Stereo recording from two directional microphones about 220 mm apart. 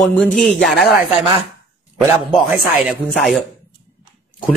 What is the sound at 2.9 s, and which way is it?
Speech, centre (ahead or behind).